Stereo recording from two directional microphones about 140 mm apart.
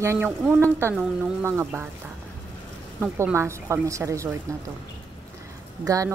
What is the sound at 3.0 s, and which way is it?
Speech, 15° right (ahead or behind).